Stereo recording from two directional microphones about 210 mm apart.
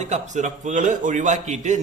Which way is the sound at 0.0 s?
35° right (ahead or behind).